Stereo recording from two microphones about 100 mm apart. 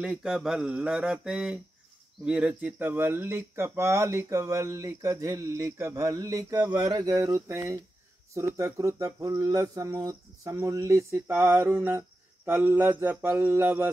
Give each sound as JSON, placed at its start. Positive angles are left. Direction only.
{"t": 0.0, "sound": "speech", "side_deg": -5}